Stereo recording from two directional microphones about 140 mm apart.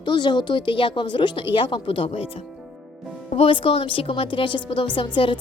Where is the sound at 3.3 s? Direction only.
40° left (ahead or behind).